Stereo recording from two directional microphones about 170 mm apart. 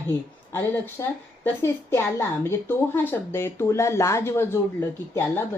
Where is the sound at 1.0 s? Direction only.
20° left (ahead or behind).